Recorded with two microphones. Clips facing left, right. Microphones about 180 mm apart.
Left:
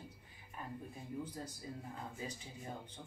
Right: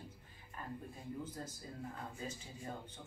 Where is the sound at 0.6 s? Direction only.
15° left (ahead or behind).